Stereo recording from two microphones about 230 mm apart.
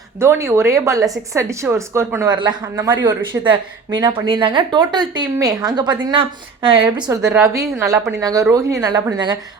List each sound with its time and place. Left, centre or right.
0.2 s a woman's voice: centre
7.3 s a woman's voice: centre